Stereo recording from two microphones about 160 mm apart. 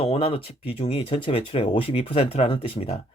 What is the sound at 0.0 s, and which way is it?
Speech, 35° left (ahead or behind).